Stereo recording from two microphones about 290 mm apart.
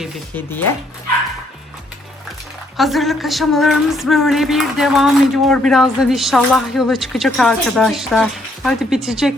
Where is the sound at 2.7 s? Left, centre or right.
Centre.